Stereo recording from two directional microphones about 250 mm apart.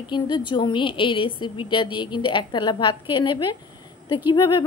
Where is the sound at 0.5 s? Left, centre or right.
Centre.